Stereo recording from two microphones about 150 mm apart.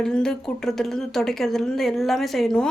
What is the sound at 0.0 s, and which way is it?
A woman's voice, 5° left (ahead or behind).